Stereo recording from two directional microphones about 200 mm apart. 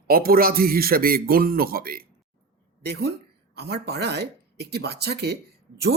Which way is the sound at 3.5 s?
55° right (ahead or behind).